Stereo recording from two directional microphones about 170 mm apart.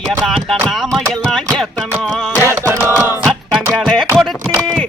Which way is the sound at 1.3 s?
5° left (ahead or behind).